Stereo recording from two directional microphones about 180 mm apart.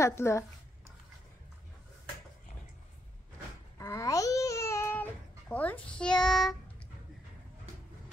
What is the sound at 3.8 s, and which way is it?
Babbling, 20° left (ahead or behind).